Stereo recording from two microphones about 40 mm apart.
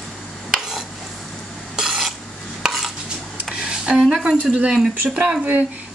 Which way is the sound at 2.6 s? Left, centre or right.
Centre.